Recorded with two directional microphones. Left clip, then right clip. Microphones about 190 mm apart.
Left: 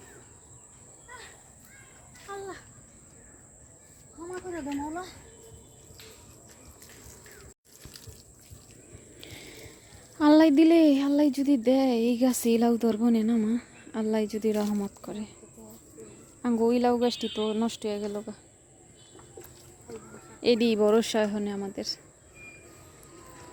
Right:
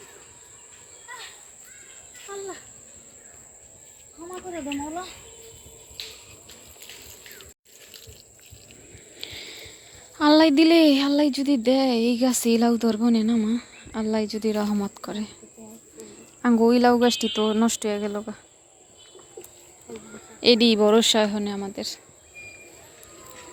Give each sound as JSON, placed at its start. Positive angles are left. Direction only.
{"t": 2.3, "sound": "cricket", "side_deg": -25}
{"t": 9.1, "sound": "a sound", "side_deg": 15}
{"t": 10.2, "sound": "speech", "side_deg": 15}
{"t": 14.6, "sound": "speech", "side_deg": 10}
{"t": 20.4, "sound": "speech", "side_deg": 5}